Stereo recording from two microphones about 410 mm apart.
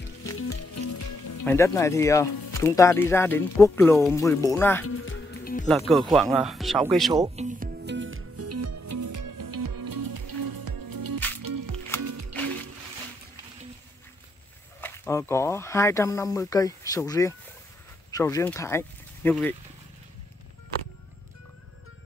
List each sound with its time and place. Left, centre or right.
0.2 s music: left
1.4 s speech: centre
4.8 s music: left
5.7 s speech: centre
7.1 s music: centre; by 12.4 s right
14.8 s speech: centre